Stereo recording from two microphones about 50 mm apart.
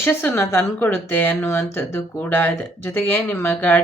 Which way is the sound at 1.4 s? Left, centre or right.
Left.